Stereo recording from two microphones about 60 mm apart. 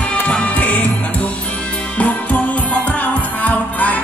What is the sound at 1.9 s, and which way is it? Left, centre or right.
Music, left.